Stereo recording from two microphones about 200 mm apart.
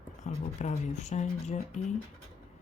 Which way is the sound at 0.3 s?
35° left (ahead or behind).